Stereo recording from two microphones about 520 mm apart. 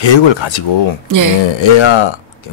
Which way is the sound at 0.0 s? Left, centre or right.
Left.